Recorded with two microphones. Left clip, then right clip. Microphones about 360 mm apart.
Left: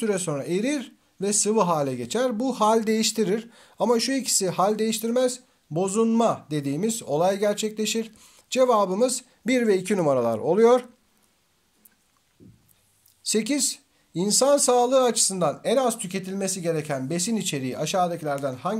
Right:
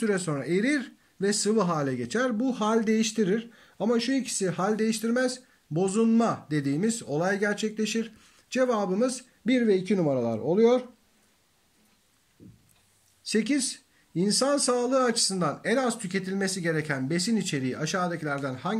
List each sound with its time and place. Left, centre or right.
0.0 s speech: centre
13.2 s speech: centre